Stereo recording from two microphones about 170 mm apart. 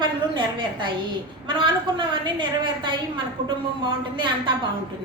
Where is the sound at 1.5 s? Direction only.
30° right (ahead or behind).